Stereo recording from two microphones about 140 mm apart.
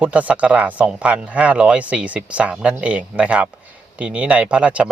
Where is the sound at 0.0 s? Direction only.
10° right (ahead or behind).